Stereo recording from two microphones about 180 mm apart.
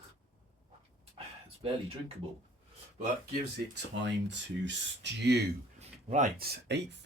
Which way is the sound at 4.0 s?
75° right (ahead or behind).